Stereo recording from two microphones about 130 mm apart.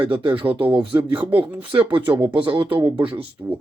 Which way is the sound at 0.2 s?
45° right (ahead or behind).